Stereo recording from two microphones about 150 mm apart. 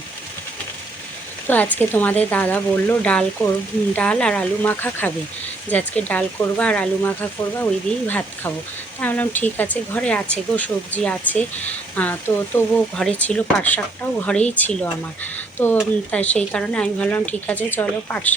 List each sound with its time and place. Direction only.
1.5 s speech: 10° left (ahead or behind)